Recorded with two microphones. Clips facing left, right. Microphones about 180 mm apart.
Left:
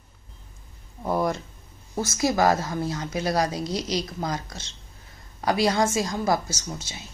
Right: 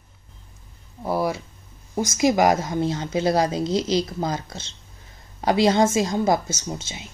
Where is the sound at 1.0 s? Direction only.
10° right (ahead or behind).